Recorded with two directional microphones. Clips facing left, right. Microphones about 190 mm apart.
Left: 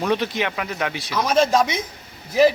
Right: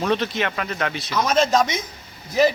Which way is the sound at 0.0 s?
10° left (ahead or behind).